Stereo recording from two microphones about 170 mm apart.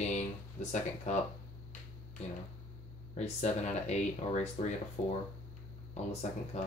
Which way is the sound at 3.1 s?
40° left (ahead or behind).